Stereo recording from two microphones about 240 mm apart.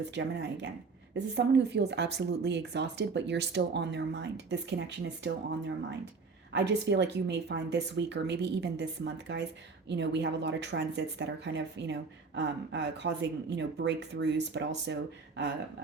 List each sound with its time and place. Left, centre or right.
0.1 s speech: right